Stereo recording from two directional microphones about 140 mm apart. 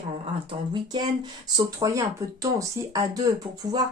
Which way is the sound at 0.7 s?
30° right (ahead or behind).